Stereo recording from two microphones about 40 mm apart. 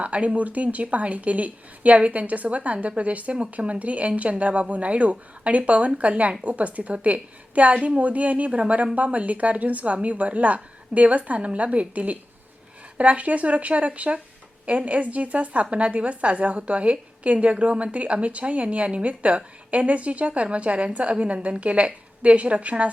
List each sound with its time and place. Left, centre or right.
0.0 s a woman's voice: right